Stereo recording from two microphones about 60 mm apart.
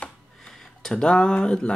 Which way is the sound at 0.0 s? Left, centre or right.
Centre.